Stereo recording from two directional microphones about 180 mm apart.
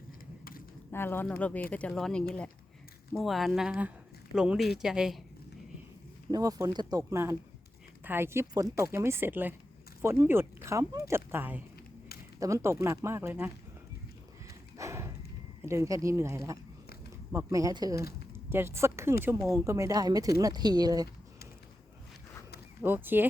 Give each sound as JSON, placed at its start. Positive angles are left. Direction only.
{"t": 0.9, "sound": "speech", "side_deg": 10}
{"t": 6.3, "sound": "speech", "side_deg": -20}
{"t": 14.8, "sound": "horse", "side_deg": -15}
{"t": 15.6, "sound": "speech", "side_deg": -15}
{"t": 22.8, "sound": "speech", "side_deg": -10}